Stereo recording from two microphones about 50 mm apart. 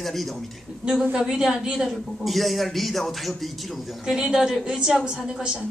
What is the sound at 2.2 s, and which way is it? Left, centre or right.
Speech, centre.